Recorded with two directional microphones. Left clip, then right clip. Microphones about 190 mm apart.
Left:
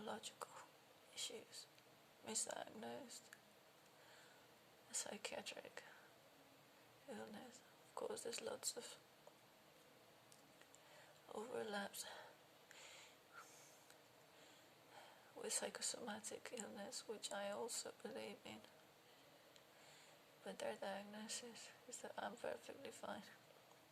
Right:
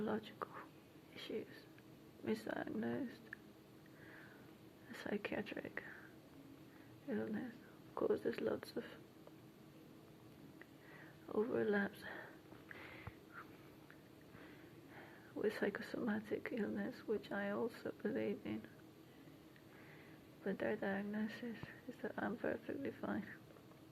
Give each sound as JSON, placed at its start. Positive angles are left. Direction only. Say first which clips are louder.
{"t": 0.0, "sound": "speech", "louder": "right 8 dB", "side_deg": 15}
{"t": 4.9, "sound": "speech", "louder": "right 6 dB", "side_deg": 15}
{"t": 7.1, "sound": "speech", "louder": "right 10 dB", "side_deg": 15}
{"t": 11.3, "sound": "speech", "louder": "right 10 dB", "side_deg": 15}
{"t": 14.9, "sound": "speech", "louder": "right 9 dB", "side_deg": 15}
{"t": 20.4, "sound": "speech", "louder": "right 7 dB", "side_deg": 15}